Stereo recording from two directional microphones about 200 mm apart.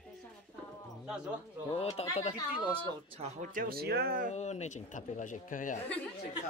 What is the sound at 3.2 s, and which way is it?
Speech, 40° right (ahead or behind).